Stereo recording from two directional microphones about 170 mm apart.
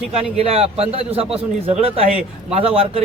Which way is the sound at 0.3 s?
35° right (ahead or behind).